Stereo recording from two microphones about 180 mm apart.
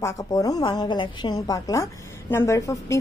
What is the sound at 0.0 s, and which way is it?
A woman's voice, 20° left (ahead or behind).